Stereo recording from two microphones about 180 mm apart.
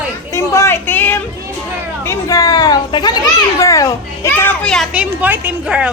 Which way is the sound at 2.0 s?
20° left (ahead or behind).